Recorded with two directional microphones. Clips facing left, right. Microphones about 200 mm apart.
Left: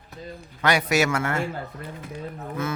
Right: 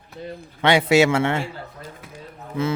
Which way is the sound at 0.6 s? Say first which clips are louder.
Right 6 dB; 30° right (ahead or behind).